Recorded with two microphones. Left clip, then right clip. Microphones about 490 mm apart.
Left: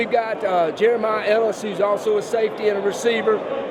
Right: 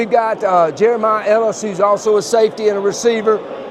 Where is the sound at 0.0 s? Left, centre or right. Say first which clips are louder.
Right 6 dB; right.